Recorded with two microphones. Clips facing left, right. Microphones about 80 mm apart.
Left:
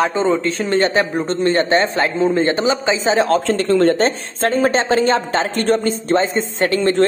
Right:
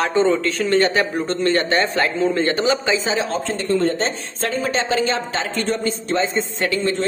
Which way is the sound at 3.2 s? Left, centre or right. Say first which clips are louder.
Left 6 dB; left.